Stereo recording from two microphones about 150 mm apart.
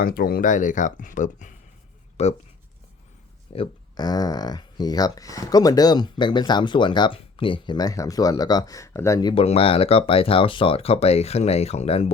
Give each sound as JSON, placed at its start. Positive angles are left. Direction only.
{"t": 0.0, "sound": "speech", "side_deg": 90}
{"t": 2.2, "sound": "speech", "side_deg": 45}
{"t": 3.5, "sound": "speech", "side_deg": 30}
{"t": 9.3, "sound": "speech", "side_deg": 40}